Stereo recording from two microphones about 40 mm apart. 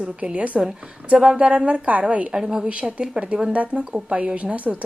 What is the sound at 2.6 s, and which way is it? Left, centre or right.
A woman's voice, right.